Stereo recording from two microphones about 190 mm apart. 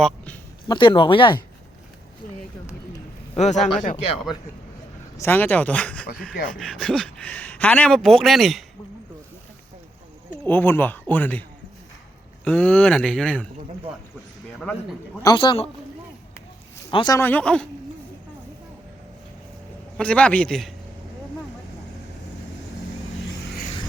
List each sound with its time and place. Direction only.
0.7 s speech: 25° left (ahead or behind)
3.3 s speech: 40° left (ahead or behind)
5.1 s a man's voice: 10° left (ahead or behind)
10.4 s speech: 10° left (ahead or behind)
12.5 s speech: 5° left (ahead or behind)
14.6 s a man's voice: 5° left (ahead or behind)
15.2 s speech: 20° left (ahead or behind)
16.9 s speech: 25° left (ahead or behind)
17.2 s speech: 10° left (ahead or behind)
20.0 s a man's voice: 5° left (ahead or behind)